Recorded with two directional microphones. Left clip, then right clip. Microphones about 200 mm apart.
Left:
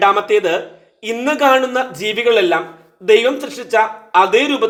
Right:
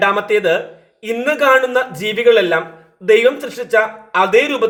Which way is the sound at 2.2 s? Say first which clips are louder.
Right 2 dB; 25° left (ahead or behind).